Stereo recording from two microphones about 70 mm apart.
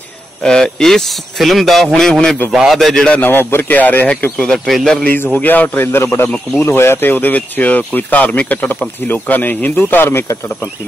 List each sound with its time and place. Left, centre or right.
0.4 s speech: centre
2.5 s a man's voice: centre
2.8 s speech: centre
3.2 s speech: left
4.4 s speech: centre
5.0 s speech: left